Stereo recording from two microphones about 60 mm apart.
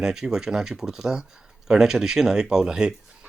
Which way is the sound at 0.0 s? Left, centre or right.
Centre.